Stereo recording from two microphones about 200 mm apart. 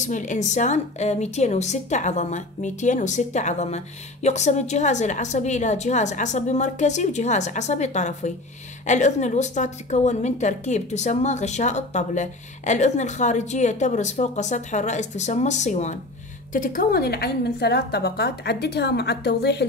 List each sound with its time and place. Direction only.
0.0 s a woman's voice: 40° left (ahead or behind); by 19.6 s 55° left (ahead or behind)